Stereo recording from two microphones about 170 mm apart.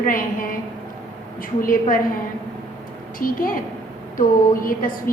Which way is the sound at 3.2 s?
55° left (ahead or behind).